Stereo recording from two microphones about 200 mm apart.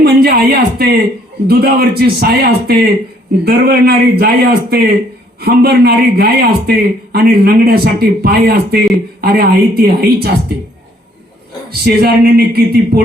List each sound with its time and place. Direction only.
0.0 s speech: 50° right (ahead or behind)
11.7 s speech: 50° right (ahead or behind)